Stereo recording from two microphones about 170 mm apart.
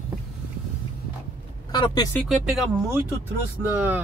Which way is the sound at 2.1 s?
Centre (ahead or behind).